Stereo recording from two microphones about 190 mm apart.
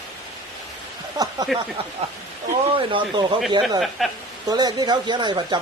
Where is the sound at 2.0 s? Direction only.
35° right (ahead or behind).